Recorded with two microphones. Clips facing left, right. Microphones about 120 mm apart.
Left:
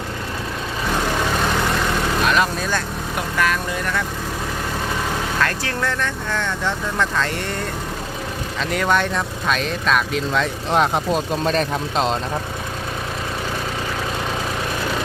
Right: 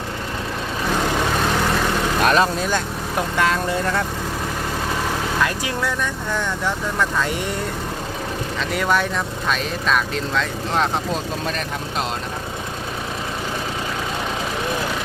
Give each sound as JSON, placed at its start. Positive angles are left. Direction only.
{"t": 2.2, "sound": "vehicle", "side_deg": -35}
{"t": 2.6, "sound": "speech", "side_deg": -20}
{"t": 5.4, "sound": "speech", "side_deg": -10}
{"t": 8.7, "sound": "speech", "side_deg": -5}
{"t": 10.3, "sound": "speech", "side_deg": 15}
{"t": 11.5, "sound": "speech", "side_deg": 25}